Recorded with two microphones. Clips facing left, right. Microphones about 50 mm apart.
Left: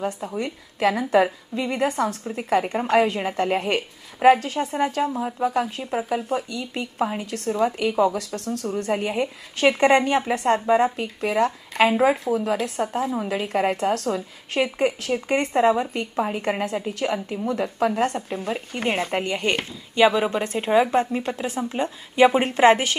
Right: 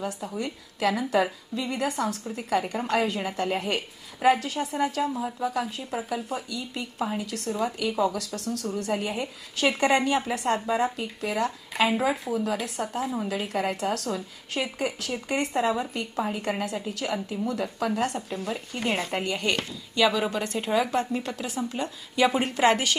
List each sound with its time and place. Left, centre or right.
0.0 s a woman's voice: left